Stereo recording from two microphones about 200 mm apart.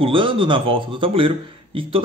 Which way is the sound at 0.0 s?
25° right (ahead or behind).